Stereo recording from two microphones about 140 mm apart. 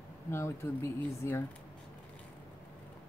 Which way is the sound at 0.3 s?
20° left (ahead or behind).